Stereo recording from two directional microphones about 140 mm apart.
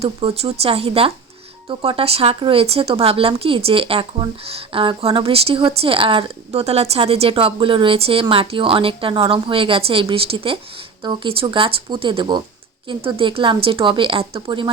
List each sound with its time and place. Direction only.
0.0 s speech: 40° right (ahead or behind)